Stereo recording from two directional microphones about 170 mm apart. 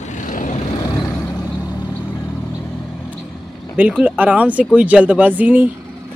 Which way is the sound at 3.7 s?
10° right (ahead or behind).